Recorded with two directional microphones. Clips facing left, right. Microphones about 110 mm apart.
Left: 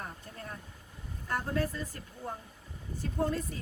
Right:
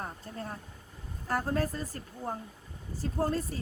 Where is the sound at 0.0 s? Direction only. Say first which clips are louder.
Right 4 dB; 35° right (ahead or behind).